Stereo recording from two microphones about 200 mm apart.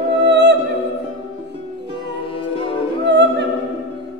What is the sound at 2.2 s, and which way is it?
Music, 25° left (ahead or behind).